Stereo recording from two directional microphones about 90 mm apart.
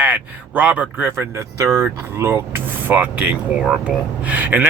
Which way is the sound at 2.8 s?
15° right (ahead or behind).